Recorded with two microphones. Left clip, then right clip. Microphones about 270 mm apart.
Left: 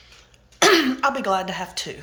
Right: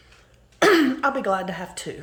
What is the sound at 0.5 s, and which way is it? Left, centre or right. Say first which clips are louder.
Speech: left 1 dB; centre.